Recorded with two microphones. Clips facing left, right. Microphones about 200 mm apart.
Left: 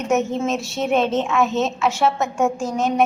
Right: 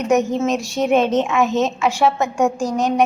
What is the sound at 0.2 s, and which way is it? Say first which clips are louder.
A woman's voice: right 3 dB; 15° right (ahead or behind).